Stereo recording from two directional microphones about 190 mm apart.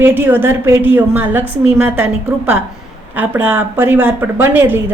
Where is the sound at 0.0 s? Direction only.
10° right (ahead or behind).